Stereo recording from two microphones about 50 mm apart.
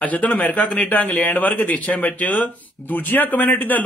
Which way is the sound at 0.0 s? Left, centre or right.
Left.